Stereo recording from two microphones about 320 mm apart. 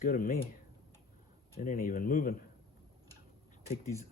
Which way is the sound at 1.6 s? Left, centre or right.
Left.